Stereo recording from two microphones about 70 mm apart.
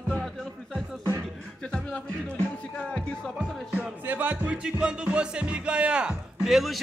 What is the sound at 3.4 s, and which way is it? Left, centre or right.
Music, right.